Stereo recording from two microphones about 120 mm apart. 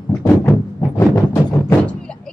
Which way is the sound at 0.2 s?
25° left (ahead or behind).